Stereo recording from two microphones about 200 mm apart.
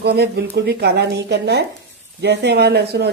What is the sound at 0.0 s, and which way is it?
Speech, 55° right (ahead or behind).